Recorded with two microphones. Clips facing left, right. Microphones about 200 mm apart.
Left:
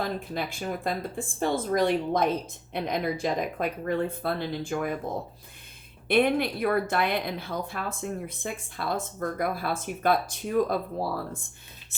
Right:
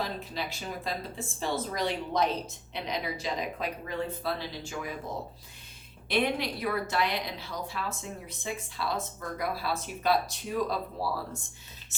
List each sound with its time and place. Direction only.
0.0 s speech: 50° left (ahead or behind)
6.1 s speech: 55° left (ahead or behind)